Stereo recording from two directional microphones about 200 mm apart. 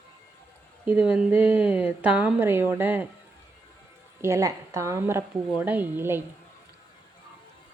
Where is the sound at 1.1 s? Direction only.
5° right (ahead or behind).